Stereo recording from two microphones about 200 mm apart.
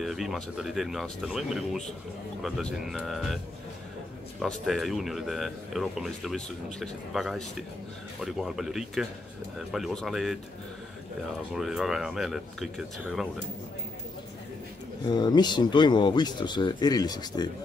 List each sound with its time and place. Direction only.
0.0 s a man's voice: centre (ahead or behind)
4.4 s a man's voice: centre (ahead or behind)
11.5 s a man's voice: centre (ahead or behind)
15.0 s speech: 20° left (ahead or behind)